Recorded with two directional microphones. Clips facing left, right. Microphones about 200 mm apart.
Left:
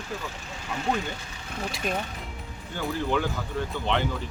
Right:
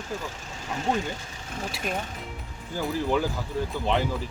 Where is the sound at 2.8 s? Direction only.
5° right (ahead or behind).